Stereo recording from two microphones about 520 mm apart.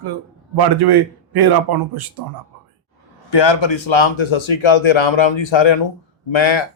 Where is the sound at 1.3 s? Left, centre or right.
Right.